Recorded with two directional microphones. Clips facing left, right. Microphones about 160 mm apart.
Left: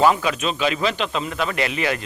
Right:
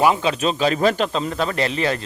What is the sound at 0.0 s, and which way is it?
A man's voice, 25° right (ahead or behind).